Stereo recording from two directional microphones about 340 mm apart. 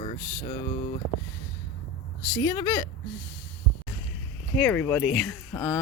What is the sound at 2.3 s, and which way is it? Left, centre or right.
Speech, centre.